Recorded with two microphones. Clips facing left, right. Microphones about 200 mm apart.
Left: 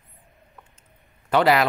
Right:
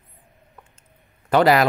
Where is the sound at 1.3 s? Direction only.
40° right (ahead or behind).